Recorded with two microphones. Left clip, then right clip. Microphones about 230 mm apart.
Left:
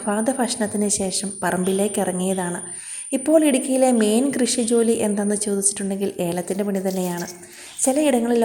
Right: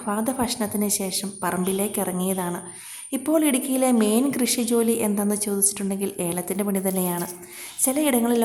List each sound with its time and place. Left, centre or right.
0.0 s a woman's voice: centre